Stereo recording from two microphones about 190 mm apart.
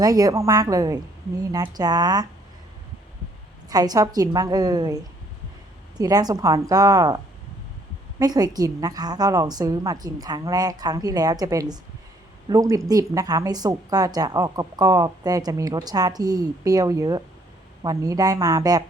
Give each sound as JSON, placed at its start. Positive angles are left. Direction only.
{"t": 0.0, "sound": "a woman's voice", "side_deg": -20}
{"t": 3.7, "sound": "a woman's voice", "side_deg": -20}
{"t": 6.0, "sound": "a woman's voice", "side_deg": -20}
{"t": 8.2, "sound": "a woman's voice", "side_deg": -20}